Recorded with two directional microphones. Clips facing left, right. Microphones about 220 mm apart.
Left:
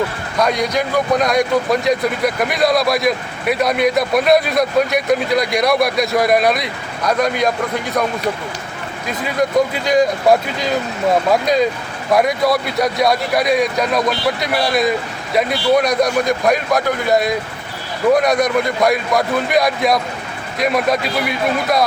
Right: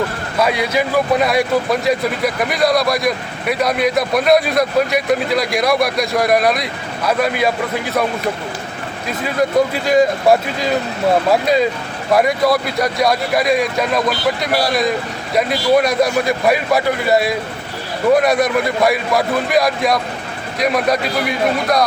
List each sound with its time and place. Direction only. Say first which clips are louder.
0.3 s speech: even; 5° right (ahead or behind)
9.2 s speech: right 1 dB; centre (ahead or behind)